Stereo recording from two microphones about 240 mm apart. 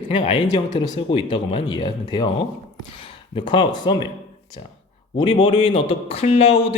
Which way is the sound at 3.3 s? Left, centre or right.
Centre.